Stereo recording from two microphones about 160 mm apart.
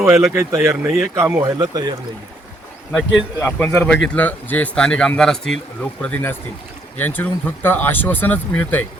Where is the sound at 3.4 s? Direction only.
10° left (ahead or behind).